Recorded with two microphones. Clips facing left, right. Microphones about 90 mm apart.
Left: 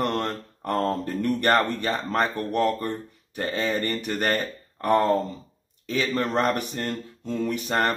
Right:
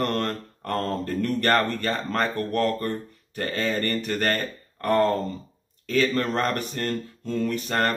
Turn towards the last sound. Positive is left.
turn(degrees=15)  # may be behind; listen again after turning